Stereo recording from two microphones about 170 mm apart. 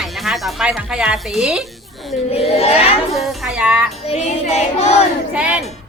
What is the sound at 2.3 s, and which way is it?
Child singing, 35° left (ahead or behind).